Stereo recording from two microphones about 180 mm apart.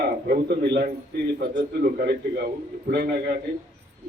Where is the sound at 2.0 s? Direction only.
60° right (ahead or behind).